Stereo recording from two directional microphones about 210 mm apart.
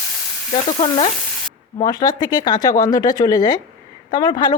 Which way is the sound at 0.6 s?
25° left (ahead or behind).